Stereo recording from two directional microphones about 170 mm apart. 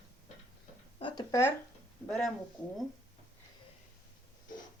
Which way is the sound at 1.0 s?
30° left (ahead or behind).